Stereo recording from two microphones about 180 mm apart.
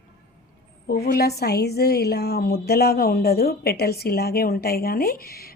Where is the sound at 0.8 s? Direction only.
60° left (ahead or behind).